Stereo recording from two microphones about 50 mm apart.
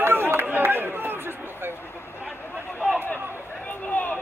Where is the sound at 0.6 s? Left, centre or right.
Right.